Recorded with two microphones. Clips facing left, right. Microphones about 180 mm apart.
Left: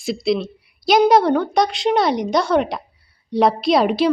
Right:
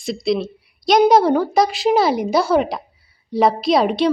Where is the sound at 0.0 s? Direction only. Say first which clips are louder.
Even; centre (ahead or behind).